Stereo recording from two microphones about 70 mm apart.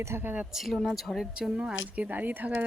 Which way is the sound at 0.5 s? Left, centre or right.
Centre.